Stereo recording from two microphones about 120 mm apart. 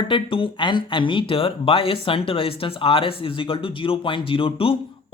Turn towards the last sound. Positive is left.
turn(degrees=50)  # may be behind; listen again after turning